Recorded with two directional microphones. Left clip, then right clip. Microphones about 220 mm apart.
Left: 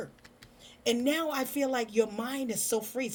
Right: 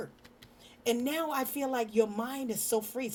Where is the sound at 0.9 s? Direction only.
20° right (ahead or behind).